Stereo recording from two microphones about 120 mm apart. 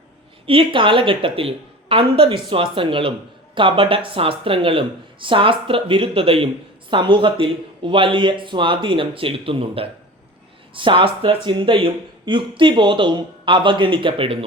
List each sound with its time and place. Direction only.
0.4 s speech: 45° right (ahead or behind)